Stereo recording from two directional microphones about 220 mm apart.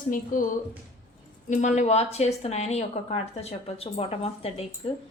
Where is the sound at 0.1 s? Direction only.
40° left (ahead or behind).